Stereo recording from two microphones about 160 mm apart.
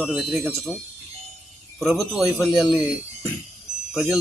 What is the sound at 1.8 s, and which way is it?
A man's voice, 5° right (ahead or behind).